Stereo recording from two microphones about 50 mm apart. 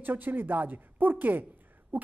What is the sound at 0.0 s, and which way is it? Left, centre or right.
A woman's voice, right.